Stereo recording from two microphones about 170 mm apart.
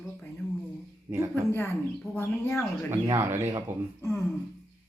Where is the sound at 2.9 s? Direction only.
15° right (ahead or behind).